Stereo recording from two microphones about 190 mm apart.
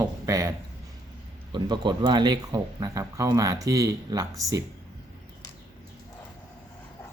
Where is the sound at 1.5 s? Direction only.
25° right (ahead or behind).